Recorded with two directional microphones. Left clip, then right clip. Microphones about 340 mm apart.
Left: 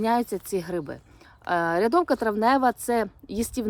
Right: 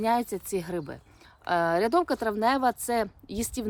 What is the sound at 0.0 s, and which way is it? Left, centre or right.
A woman's voice, centre.